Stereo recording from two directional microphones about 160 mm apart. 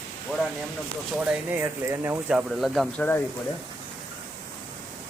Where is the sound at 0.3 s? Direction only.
5° right (ahead or behind).